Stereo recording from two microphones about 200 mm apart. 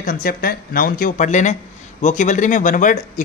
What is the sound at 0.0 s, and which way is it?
Speech, 45° left (ahead or behind).